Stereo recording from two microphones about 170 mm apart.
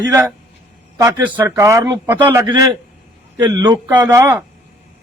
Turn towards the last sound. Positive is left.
turn(degrees=-15)  # may be behind; listen again after turning